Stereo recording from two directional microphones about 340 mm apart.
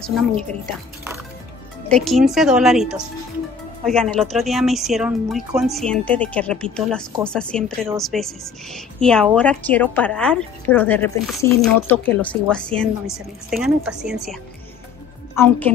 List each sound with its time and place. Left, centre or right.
0.0 s a woman's voice: centre
1.9 s a woman's voice: centre